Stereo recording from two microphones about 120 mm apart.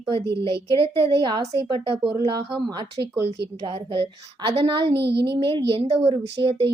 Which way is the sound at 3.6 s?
45° right (ahead or behind).